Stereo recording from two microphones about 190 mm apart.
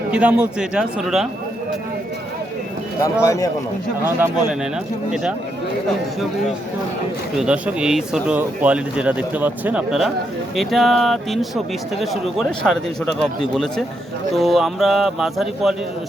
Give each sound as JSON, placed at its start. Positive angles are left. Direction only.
{"t": 0.1, "sound": "speech", "side_deg": -5}
{"t": 3.2, "sound": "a man's voice", "side_deg": 15}
{"t": 4.0, "sound": "speech", "side_deg": -5}
{"t": 7.3, "sound": "speech", "side_deg": -5}